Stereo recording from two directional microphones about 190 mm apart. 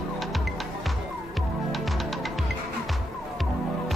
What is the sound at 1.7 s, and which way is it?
Music, centre (ahead or behind).